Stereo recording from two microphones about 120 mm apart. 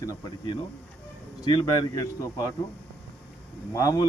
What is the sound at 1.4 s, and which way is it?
Speech, 35° left (ahead or behind).